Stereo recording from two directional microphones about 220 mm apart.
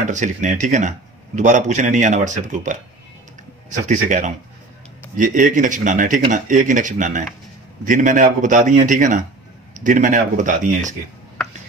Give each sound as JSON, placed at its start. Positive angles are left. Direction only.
{"t": 0.0, "sound": "speech", "side_deg": -35}
{"t": 3.9, "sound": "speech", "side_deg": -35}